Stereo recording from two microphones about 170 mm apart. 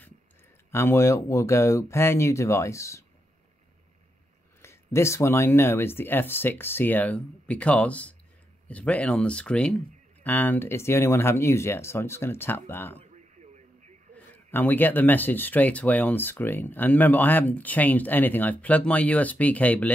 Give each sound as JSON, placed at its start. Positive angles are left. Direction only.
{"t": 0.7, "sound": "speech", "side_deg": 15}
{"t": 4.6, "sound": "speech", "side_deg": 15}
{"t": 13.1, "sound": "radio", "side_deg": -40}
{"t": 14.1, "sound": "speech", "side_deg": 10}